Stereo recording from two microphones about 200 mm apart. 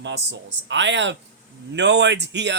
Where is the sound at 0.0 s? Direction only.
60° right (ahead or behind).